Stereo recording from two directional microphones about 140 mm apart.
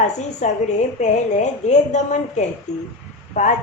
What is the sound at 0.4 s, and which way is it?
A woman's voice, 60° left (ahead or behind).